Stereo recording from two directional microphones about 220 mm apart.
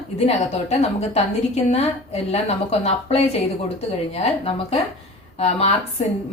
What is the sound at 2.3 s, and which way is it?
A woman's voice, 30° left (ahead or behind).